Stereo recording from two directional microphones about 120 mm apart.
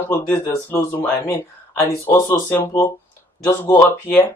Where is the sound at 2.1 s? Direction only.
30° left (ahead or behind).